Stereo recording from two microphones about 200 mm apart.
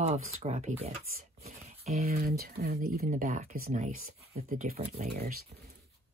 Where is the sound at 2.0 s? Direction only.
50° right (ahead or behind).